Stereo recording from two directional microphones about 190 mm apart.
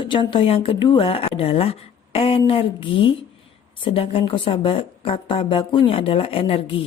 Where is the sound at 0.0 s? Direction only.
25° left (ahead or behind).